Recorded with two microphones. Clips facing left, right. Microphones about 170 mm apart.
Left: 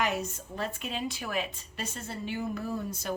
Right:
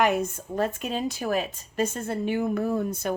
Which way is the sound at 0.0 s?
55° right (ahead or behind).